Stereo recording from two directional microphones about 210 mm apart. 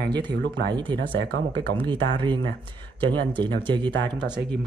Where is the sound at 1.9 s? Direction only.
20° right (ahead or behind).